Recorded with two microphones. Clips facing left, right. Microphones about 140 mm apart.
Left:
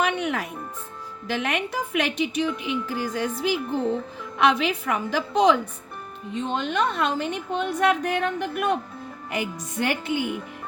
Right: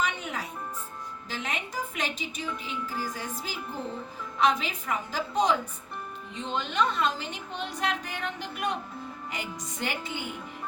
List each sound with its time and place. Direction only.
0.0 s music: 70° left (ahead or behind)
1.3 s a woman's voice: 70° left (ahead or behind)
6.3 s a woman's voice: 55° left (ahead or behind)